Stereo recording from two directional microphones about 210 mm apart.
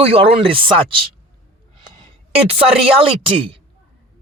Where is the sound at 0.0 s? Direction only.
25° right (ahead or behind).